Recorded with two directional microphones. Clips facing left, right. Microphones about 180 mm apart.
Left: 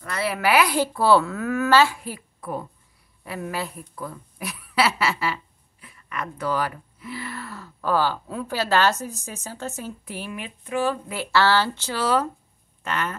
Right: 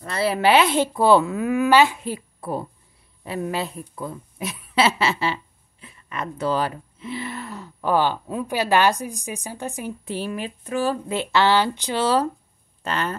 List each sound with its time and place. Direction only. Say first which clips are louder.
0.0 s speech: right 4 dB; 30° right (ahead or behind)
10.0 s speech: right 6 dB; 30° right (ahead or behind)
11.1 s speech: right 2 dB; 20° right (ahead or behind)